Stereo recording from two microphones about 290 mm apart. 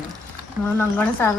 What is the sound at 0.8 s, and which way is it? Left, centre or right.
Speech, centre.